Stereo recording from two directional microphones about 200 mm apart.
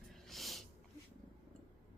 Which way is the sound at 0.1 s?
Centre (ahead or behind).